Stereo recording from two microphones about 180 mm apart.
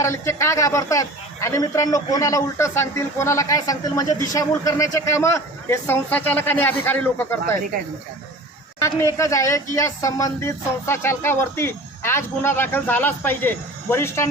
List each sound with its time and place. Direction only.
0.0 s a woman's voice: 15° left (ahead or behind)
8.8 s a woman's voice: 15° left (ahead or behind)